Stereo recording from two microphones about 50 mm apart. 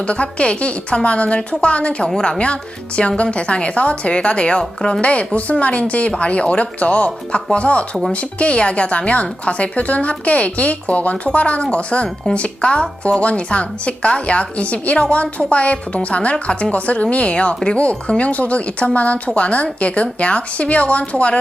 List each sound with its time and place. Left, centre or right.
0.1 s a woman's voice: left